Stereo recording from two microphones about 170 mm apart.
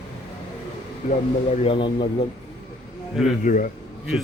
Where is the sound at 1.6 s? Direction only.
30° left (ahead or behind).